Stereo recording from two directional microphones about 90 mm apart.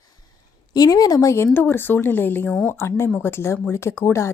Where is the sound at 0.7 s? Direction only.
45° left (ahead or behind).